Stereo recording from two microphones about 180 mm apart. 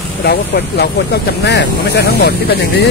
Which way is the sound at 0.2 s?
65° left (ahead or behind).